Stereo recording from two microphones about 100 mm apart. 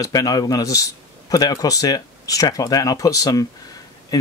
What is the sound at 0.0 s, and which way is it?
Speech, 35° left (ahead or behind).